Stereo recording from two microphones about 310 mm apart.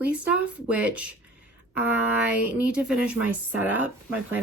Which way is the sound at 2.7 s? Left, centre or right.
Centre.